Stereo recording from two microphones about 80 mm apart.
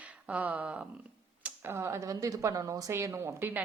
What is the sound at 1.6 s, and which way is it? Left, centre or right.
A woman's voice, right.